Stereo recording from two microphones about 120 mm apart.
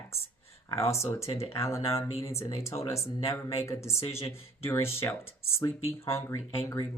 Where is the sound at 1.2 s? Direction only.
60° left (ahead or behind).